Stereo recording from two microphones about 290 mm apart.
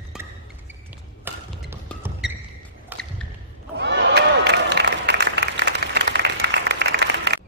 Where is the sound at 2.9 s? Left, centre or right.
Centre.